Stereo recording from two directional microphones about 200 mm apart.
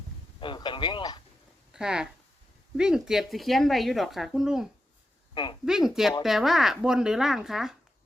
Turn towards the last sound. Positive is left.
turn(degrees=0)  # may be behind; listen again after turning